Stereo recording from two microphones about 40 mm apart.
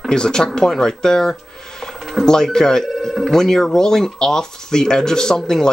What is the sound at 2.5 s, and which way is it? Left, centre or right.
Speech, centre.